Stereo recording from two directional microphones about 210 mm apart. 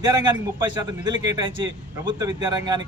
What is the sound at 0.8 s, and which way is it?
Speech, 20° right (ahead or behind).